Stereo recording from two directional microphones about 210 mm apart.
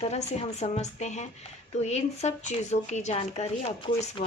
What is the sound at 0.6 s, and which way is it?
Speech, 30° left (ahead or behind).